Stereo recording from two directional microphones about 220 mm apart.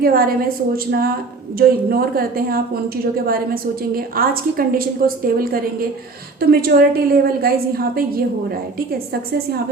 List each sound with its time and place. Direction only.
0.0 s a woman's voice: 40° right (ahead or behind)